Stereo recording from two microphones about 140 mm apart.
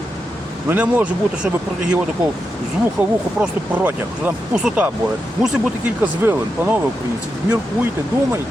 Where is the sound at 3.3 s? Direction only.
10° right (ahead or behind).